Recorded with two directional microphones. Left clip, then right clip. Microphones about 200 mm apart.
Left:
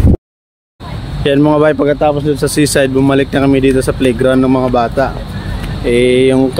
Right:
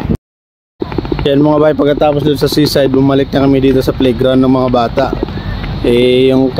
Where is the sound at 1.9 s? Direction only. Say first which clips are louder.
Right 1 dB; 30° right (ahead or behind).